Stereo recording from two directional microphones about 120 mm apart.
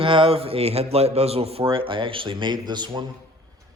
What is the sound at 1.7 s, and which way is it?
Speech, 45° right (ahead or behind).